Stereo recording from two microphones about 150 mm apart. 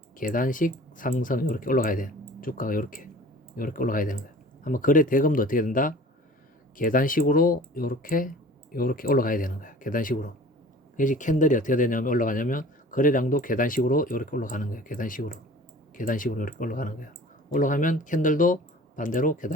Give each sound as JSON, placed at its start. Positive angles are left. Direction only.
{"t": 0.2, "sound": "speech", "side_deg": 65}